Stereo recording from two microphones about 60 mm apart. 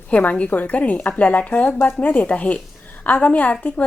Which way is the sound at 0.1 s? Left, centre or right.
Left.